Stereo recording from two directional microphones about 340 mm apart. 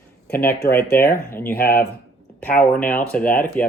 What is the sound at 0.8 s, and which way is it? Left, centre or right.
Speech, centre.